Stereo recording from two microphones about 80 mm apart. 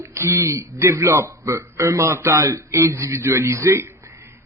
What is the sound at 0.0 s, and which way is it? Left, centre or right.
A man's voice, right.